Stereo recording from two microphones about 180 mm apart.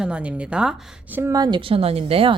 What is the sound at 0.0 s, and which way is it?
A woman's voice, 5° right (ahead or behind).